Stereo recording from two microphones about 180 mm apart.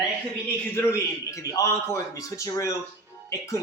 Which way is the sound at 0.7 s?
15° left (ahead or behind).